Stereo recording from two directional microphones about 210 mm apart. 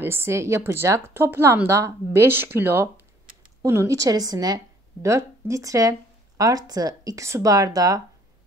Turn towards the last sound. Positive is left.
turn(degrees=-15)  # may be behind; listen again after turning